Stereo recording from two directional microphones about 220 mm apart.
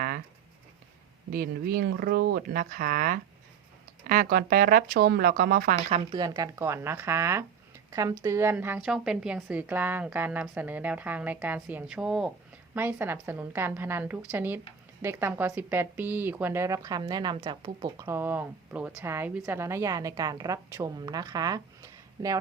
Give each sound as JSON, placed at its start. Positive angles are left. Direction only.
{"t": 1.3, "sound": "speech", "side_deg": -40}
{"t": 5.9, "sound": "speech", "side_deg": -20}